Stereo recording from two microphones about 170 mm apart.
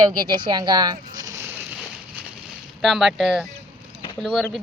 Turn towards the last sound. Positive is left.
turn(degrees=0)  # may be behind; listen again after turning